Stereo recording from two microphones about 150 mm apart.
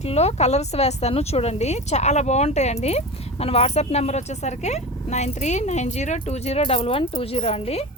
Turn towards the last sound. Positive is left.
turn(degrees=45)  # may be behind; listen again after turning